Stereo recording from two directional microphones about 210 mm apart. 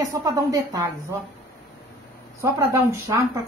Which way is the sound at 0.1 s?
15° right (ahead or behind).